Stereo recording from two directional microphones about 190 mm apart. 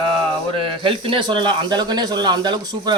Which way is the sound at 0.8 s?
30° right (ahead or behind).